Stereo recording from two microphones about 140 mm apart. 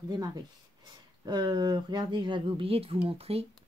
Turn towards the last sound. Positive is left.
turn(degrees=-45)  # may be behind; listen again after turning